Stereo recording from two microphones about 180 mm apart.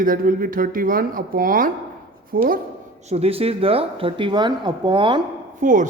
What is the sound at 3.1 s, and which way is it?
Speech, 35° right (ahead or behind).